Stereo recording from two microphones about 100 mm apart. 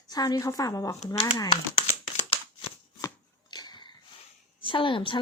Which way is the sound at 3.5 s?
45° left (ahead or behind).